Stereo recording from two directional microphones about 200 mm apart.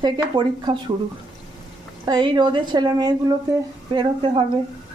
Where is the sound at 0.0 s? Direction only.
25° right (ahead or behind).